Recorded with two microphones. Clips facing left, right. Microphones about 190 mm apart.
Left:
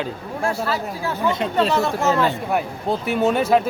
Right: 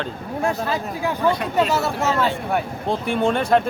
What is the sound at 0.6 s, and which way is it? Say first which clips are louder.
Speech: right 1 dB; 15° right (ahead or behind).